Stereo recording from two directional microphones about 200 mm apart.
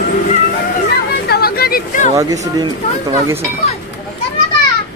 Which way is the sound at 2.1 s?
15° right (ahead or behind).